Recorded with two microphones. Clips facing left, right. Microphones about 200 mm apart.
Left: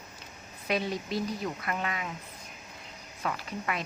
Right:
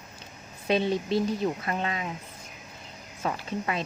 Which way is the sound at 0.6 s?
25° right (ahead or behind).